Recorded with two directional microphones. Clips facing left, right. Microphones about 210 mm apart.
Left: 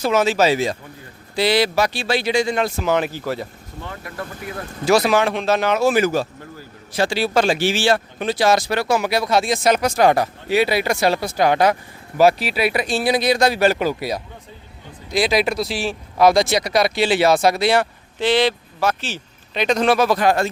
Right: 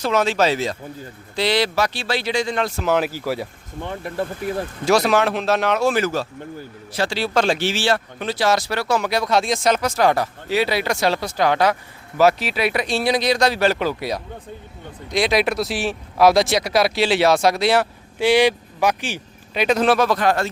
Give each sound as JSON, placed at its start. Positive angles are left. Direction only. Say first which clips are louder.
{"t": 0.0, "sound": "speech", "louder": "left 2 dB", "side_deg": 5}
{"t": 2.9, "sound": "speech", "louder": "right 3 dB", "side_deg": -5}
{"t": 3.8, "sound": "speech", "louder": "right 6 dB", "side_deg": -30}
{"t": 4.9, "sound": "speech", "louder": "left 1 dB", "side_deg": 0}
{"t": 9.0, "sound": "speech", "louder": "left 1 dB", "side_deg": 5}
{"t": 9.7, "sound": "speech", "louder": "left 2 dB", "side_deg": 15}
{"t": 20.1, "sound": "speech", "louder": "left 2 dB", "side_deg": 10}